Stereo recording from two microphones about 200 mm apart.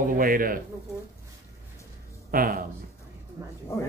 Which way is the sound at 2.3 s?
45° right (ahead or behind).